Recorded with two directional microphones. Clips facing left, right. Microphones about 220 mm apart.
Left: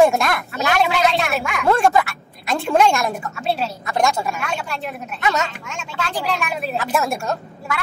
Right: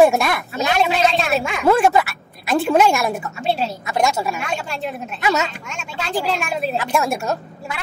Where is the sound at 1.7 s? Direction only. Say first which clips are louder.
Right 1 dB; 5° right (ahead or behind).